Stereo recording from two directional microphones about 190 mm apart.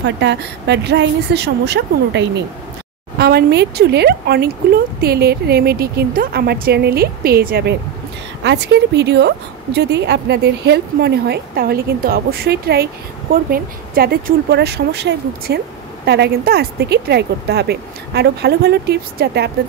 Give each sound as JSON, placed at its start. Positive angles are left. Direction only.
{"t": 0.0, "sound": "speech", "side_deg": -65}
{"t": 8.5, "sound": "speech", "side_deg": -65}